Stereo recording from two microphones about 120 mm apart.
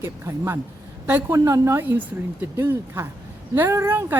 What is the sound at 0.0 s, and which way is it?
Speech, 25° right (ahead or behind).